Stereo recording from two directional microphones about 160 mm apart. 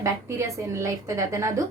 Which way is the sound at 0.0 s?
20° right (ahead or behind).